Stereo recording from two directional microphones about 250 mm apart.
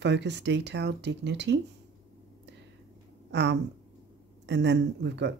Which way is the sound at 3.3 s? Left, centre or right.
Right.